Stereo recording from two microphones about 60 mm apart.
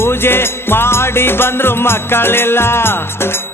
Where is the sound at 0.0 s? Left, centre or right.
Left.